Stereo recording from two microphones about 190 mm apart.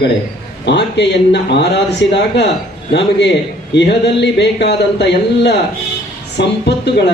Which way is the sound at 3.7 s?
65° left (ahead or behind).